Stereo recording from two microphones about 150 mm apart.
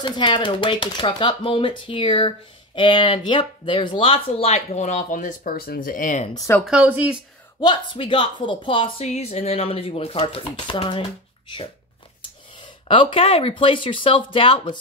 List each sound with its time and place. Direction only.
0.0 s speech: 35° left (ahead or behind); by 6.3 s 55° left (ahead or behind)
6.3 s speech: 20° left (ahead or behind)
6.6 s speech: 10° right (ahead or behind)
7.6 s speech: 30° left (ahead or behind)
9.0 s speech: 45° left (ahead or behind)
12.8 s speech: 35° left (ahead or behind)